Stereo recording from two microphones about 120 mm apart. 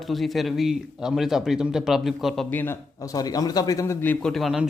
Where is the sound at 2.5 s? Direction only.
15° left (ahead or behind).